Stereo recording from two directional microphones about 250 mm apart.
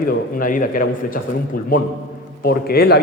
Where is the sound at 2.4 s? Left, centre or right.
Left.